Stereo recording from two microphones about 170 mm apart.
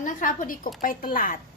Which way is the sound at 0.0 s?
50° left (ahead or behind).